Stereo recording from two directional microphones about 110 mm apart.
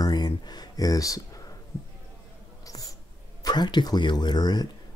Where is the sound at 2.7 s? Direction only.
30° left (ahead or behind).